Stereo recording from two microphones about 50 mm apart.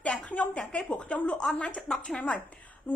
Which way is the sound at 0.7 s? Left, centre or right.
Left.